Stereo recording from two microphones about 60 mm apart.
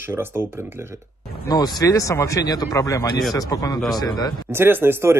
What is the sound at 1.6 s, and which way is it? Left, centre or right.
Speech, left.